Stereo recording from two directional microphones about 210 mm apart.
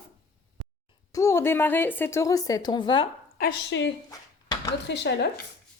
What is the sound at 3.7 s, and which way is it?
Speech, 60° left (ahead or behind).